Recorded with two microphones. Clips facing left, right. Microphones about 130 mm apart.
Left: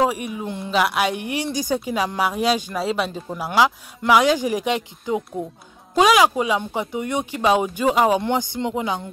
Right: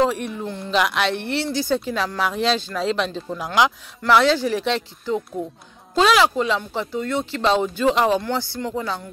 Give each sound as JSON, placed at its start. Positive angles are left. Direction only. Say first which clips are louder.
{"t": 0.0, "sound": "speech", "louder": "even", "side_deg": 10}